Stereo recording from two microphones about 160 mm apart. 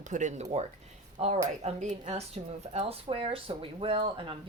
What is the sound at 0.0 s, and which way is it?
A woman's voice, 50° right (ahead or behind).